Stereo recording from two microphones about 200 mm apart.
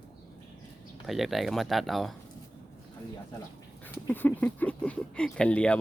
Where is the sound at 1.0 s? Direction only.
Centre (ahead or behind).